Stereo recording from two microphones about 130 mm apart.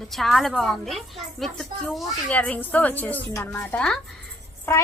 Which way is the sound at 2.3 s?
10° left (ahead or behind).